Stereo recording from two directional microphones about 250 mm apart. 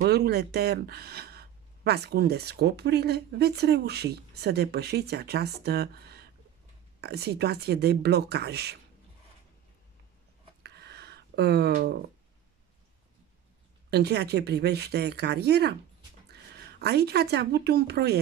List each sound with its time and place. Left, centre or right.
0.0 s speech: right
10.6 s a sound: right
13.8 s speech: right